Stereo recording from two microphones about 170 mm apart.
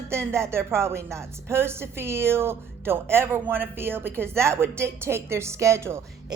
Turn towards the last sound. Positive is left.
turn(degrees=-15)  # may be behind; listen again after turning